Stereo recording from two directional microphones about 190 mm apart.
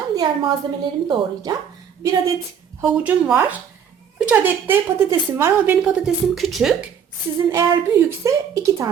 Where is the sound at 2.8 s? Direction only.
5° right (ahead or behind).